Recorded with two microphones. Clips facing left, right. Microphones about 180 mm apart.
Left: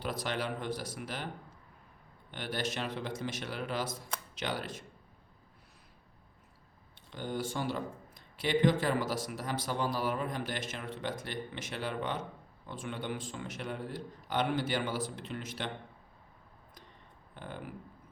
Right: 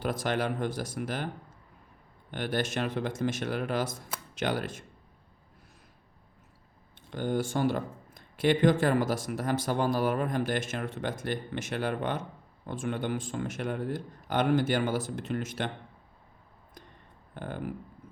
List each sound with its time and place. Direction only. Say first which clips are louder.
0.0 s speech: right 6 dB; 50° right (ahead or behind)
2.3 s speech: right 6 dB; 50° right (ahead or behind)
7.1 s speech: right 7 dB; 50° right (ahead or behind)
17.3 s speech: right 7 dB; 50° right (ahead or behind)